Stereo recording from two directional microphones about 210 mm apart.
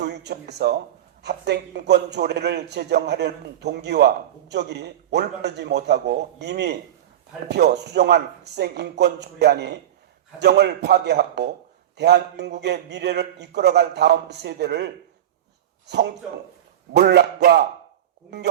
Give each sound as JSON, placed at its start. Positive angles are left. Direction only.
{"t": 0.0, "sound": "a man's voice", "side_deg": -50}
{"t": 15.9, "sound": "a man's voice", "side_deg": -50}